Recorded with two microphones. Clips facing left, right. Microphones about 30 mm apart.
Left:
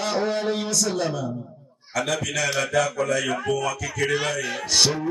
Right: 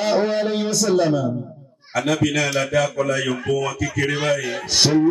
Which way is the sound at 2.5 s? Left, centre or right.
Centre.